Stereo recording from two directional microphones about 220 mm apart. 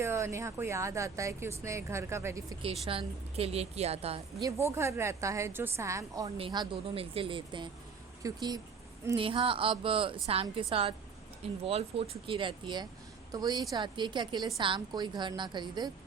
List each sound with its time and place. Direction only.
0.0 s a woman's voice: 10° right (ahead or behind)
2.8 s a woman's voice: 25° right (ahead or behind)
4.4 s a woman's voice: 15° right (ahead or behind)